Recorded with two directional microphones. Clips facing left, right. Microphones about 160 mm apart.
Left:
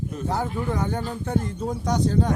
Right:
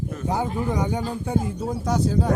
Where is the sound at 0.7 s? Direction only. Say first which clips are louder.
Right 2 dB; 15° right (ahead or behind).